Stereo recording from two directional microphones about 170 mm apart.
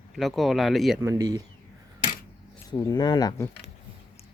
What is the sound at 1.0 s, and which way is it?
Speech, 15° right (ahead or behind).